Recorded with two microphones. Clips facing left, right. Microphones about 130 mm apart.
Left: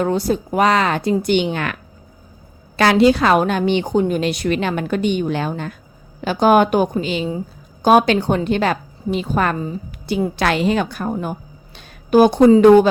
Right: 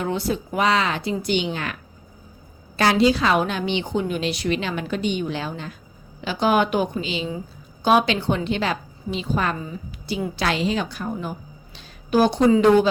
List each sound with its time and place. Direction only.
0.0 s speech: 40° left (ahead or behind); by 1.7 s 60° left (ahead or behind)
2.7 s a woman's voice: 65° left (ahead or behind); by 12.5 s 50° left (ahead or behind)